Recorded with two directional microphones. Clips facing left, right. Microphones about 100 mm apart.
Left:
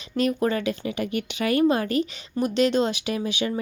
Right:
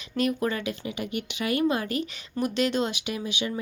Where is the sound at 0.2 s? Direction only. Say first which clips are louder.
Left 3 dB; 30° left (ahead or behind).